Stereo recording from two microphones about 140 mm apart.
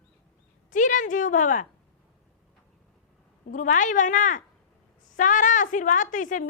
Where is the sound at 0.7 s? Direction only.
65° left (ahead or behind).